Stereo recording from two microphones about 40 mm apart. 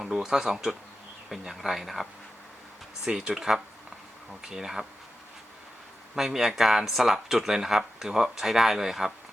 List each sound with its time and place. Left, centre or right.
0.0 s speech: centre
3.1 s speech: right
3.3 s speech: centre
6.1 s speech: centre